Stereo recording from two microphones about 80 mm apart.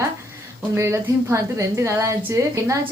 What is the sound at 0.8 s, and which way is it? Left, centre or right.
A woman's voice, right.